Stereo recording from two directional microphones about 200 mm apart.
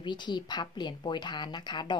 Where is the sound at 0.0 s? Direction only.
20° left (ahead or behind).